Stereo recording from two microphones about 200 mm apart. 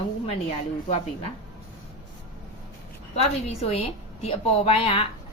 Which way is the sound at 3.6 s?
30° left (ahead or behind).